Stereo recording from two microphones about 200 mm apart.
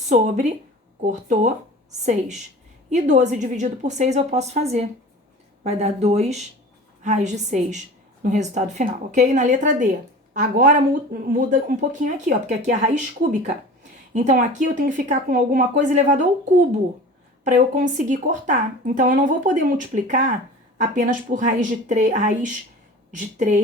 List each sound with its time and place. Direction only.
0.1 s speech: 35° right (ahead or behind)
14.1 s speech: 40° right (ahead or behind)